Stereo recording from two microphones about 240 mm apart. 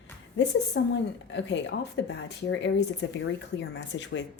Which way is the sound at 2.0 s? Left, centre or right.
Left.